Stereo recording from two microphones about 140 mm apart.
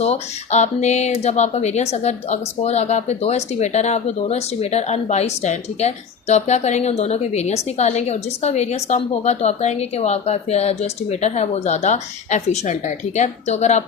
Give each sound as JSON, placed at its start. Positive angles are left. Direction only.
{"t": 0.0, "sound": "speech", "side_deg": 50}